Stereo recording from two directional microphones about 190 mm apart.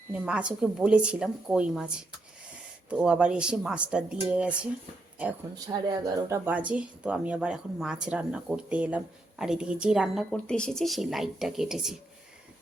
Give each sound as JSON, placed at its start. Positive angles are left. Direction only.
{"t": 0.1, "sound": "speech", "side_deg": -5}
{"t": 5.6, "sound": "speech", "side_deg": -20}